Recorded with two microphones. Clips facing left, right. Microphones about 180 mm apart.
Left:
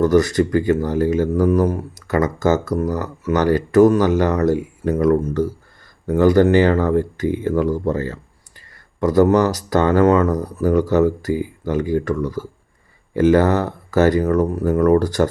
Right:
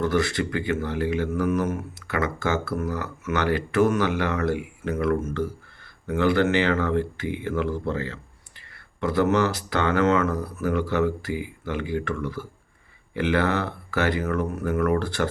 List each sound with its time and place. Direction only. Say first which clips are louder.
0.0 s speech: left 9 dB; 40° left (ahead or behind)